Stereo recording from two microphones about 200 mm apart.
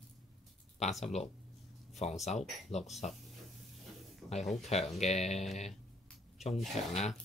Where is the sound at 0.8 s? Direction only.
35° left (ahead or behind).